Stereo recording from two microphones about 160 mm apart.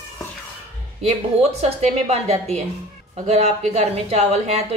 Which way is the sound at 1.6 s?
40° right (ahead or behind).